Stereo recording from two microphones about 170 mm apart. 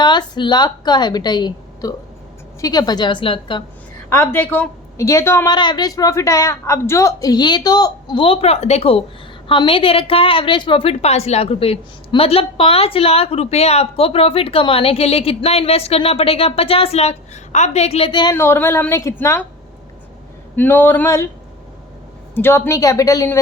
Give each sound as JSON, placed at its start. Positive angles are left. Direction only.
{"t": 0.0, "sound": "a woman's voice", "side_deg": 25}
{"t": 4.1, "sound": "a woman's voice", "side_deg": 15}
{"t": 5.5, "sound": "a woman's voice", "side_deg": 25}
{"t": 18.3, "sound": "a woman's voice", "side_deg": 15}
{"t": 20.6, "sound": "a woman's voice", "side_deg": 10}
{"t": 22.4, "sound": "a woman's voice", "side_deg": 15}